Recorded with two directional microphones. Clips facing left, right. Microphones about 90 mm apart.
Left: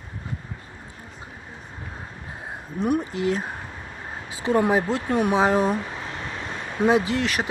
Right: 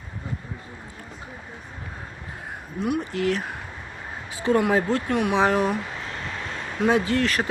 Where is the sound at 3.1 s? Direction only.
20° left (ahead or behind).